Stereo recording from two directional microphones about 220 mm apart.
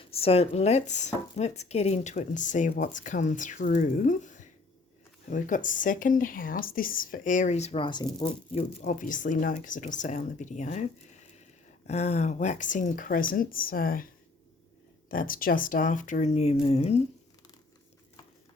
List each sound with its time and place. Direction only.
0.0 s speech: 25° left (ahead or behind)
8.8 s speech: 35° left (ahead or behind)
11.9 s speech: 30° left (ahead or behind)
15.1 s speech: 40° left (ahead or behind)